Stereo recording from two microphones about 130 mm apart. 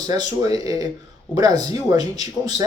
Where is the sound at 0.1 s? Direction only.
30° right (ahead or behind).